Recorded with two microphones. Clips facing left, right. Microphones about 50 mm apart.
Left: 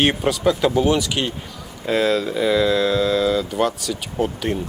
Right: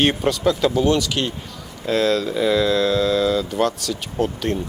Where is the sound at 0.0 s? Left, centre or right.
Centre.